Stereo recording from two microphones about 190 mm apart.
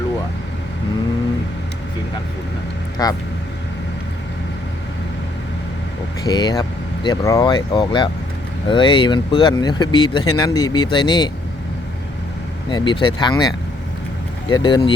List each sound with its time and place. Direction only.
3.0 s speech: 20° left (ahead or behind)
6.2 s speech: 20° left (ahead or behind)
12.7 s speech: 25° left (ahead or behind)
14.5 s speech: 25° left (ahead or behind)